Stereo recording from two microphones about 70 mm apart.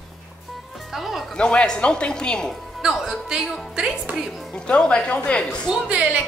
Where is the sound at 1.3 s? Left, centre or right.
Centre.